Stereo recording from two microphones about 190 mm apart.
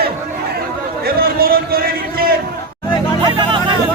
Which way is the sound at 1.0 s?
50° right (ahead or behind).